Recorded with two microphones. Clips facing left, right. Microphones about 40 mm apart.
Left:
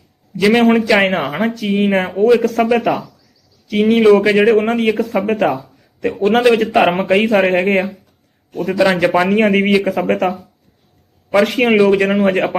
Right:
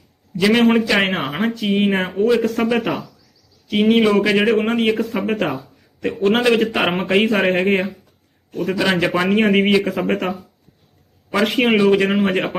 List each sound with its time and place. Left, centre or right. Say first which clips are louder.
0.3 s a man's voice: left 3 dB; centre
11.5 s a man's voice: even; centre